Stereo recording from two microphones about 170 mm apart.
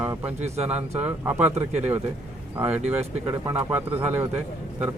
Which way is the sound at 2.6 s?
10° right (ahead or behind).